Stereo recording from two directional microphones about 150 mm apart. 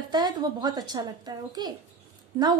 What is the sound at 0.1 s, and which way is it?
A woman's voice, 25° right (ahead or behind).